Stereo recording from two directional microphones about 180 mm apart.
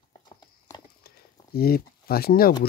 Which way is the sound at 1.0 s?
60° left (ahead or behind).